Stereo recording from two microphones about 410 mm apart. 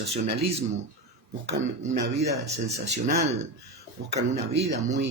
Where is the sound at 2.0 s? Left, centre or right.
Right.